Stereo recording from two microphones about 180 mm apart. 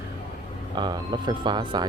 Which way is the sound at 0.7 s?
25° right (ahead or behind).